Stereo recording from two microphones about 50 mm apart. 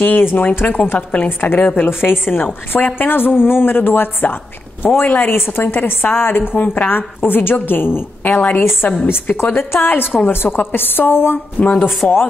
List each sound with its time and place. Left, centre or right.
0.0 s a woman's voice: left
1.9 s a woman's voice: left
5.0 s a woman's voice: left
5.3 s a woman's voice: left
11.6 s a woman's voice: left